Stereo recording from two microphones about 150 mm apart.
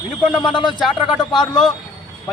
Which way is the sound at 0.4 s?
30° left (ahead or behind).